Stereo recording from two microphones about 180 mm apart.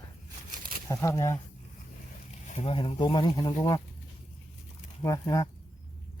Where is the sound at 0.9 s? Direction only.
15° left (ahead or behind).